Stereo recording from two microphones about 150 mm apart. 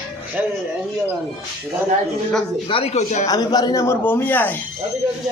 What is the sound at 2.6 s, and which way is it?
Speech, 40° left (ahead or behind).